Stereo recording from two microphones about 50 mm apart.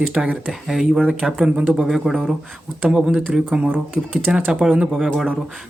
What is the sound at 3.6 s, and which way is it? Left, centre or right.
Speech, right.